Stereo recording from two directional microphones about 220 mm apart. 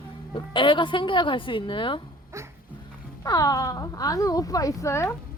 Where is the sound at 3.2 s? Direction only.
15° left (ahead or behind).